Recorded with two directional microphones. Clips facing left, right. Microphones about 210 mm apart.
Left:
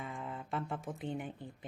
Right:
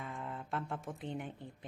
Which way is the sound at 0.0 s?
Centre (ahead or behind).